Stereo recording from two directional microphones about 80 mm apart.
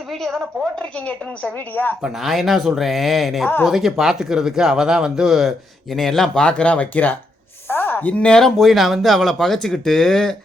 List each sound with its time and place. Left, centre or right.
0.1 s speech: centre
0.8 s a woman's voice: centre
2.0 s speech: centre